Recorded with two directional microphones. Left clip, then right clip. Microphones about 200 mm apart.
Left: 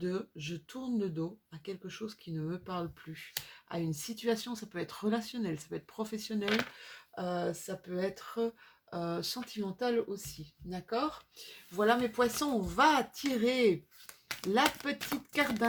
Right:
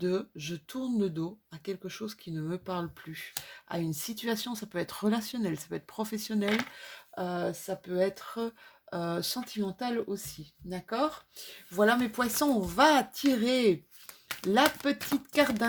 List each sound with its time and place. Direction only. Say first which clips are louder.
0.0 s speech: right 5 dB; 45° right (ahead or behind)
14.8 s speech: right 6 dB; 40° right (ahead or behind)